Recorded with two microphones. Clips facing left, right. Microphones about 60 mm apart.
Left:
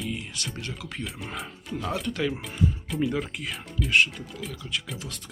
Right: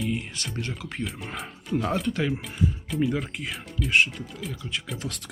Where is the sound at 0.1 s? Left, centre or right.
Right.